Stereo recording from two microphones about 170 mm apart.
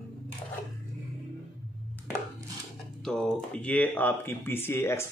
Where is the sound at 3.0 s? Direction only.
5° left (ahead or behind).